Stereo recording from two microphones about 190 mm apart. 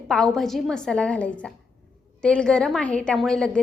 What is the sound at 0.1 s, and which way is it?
A woman's voice, centre (ahead or behind).